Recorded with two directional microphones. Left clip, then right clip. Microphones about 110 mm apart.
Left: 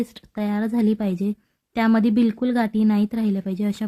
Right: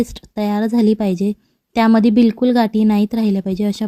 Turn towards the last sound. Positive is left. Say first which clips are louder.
# right 6 dB
turn(degrees=-40)  # may be behind; listen again after turning